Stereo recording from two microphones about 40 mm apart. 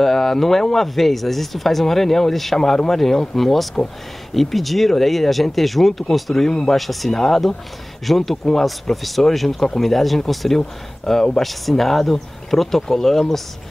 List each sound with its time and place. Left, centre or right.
0.0 s speech: centre